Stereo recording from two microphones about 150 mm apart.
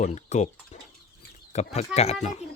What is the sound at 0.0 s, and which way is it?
Speech, 50° left (ahead or behind).